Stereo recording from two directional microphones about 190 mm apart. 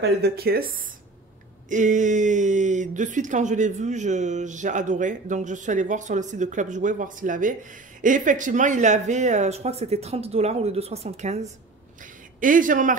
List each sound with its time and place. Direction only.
0.0 s speech: 55° right (ahead or behind)
1.7 s speech: 40° right (ahead or behind)